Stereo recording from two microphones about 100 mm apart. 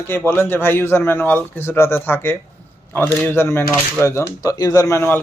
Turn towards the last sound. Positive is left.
turn(degrees=25)  # may be behind; listen again after turning